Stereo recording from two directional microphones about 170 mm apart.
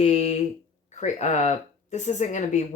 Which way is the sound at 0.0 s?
35° left (ahead or behind).